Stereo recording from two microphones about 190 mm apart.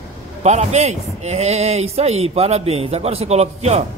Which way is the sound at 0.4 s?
35° right (ahead or behind).